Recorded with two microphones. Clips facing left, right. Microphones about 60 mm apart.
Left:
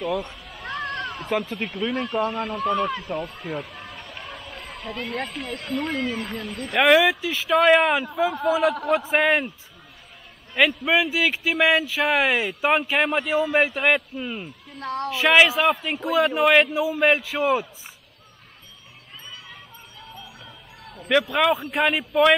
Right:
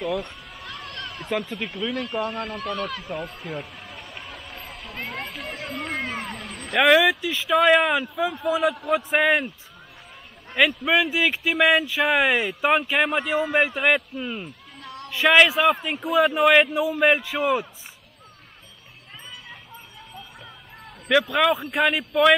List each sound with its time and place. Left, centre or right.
0.0 s speech: centre
10.5 s speech: centre
14.8 s speech: left
15.0 s speech: centre
16.7 s speech: centre
17.0 s speech: centre
21.1 s speech: centre